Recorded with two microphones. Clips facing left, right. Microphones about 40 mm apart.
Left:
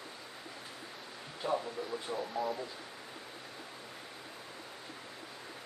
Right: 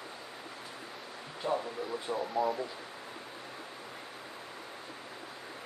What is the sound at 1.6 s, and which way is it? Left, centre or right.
Radio, centre.